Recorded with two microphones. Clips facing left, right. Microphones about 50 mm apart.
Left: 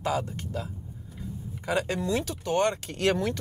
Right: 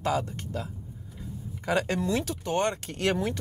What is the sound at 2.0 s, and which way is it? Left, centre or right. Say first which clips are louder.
Speech: even; left.